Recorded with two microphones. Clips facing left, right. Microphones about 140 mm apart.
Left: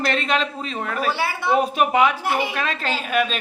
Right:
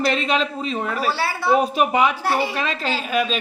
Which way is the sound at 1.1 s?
20° left (ahead or behind).